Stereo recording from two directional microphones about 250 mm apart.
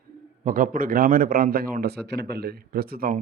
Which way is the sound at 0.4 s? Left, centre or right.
Right.